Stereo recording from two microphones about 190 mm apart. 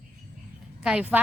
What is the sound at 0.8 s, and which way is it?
Speech, 5° right (ahead or behind).